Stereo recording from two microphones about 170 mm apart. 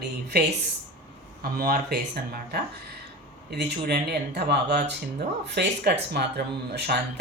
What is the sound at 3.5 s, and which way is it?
Speech, 80° right.